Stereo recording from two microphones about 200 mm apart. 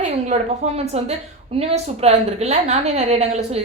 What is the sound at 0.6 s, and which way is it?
A woman's voice, 35° right (ahead or behind).